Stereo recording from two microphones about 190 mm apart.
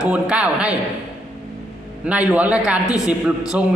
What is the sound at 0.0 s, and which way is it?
Speech, 5° right (ahead or behind).